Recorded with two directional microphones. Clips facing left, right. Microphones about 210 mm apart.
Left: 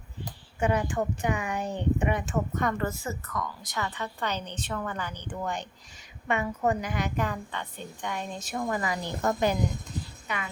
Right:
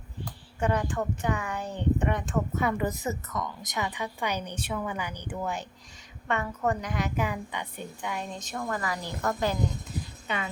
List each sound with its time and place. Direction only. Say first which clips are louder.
0.6 s speech: left 1 dB; 10° left (ahead or behind)
6.2 s a woman's voice: left 2 dB; 10° left (ahead or behind)
8.6 s a woman's voice: left 2 dB; 20° left (ahead or behind)
10.2 s speech: right 3 dB; 25° right (ahead or behind)